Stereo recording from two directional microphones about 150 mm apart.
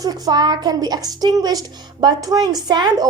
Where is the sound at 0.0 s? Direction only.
25° right (ahead or behind).